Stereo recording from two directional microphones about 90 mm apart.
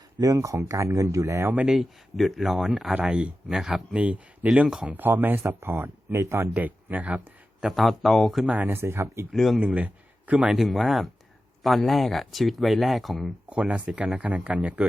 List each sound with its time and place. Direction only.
0.2 s speech: 40° right (ahead or behind)
1.5 s speech: 5° right (ahead or behind)
4.9 s speech: 20° right (ahead or behind)
7.6 s speech: centre (ahead or behind)
8.4 s speech: 20° right (ahead or behind)
9.3 s speech: centre (ahead or behind)
9.6 s speech: 15° right (ahead or behind)
10.5 s speech: centre (ahead or behind)
13.5 s speech: 15° right (ahead or behind)